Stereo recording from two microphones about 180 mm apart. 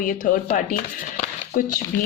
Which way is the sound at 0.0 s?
45° left (ahead or behind).